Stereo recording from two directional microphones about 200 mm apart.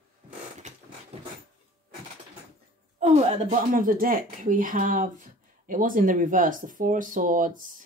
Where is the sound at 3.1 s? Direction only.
35° right (ahead or behind).